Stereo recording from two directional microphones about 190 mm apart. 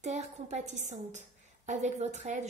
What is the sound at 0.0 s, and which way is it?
A woman's voice, 35° right (ahead or behind).